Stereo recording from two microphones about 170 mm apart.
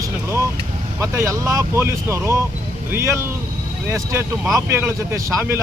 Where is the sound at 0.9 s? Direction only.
15° right (ahead or behind).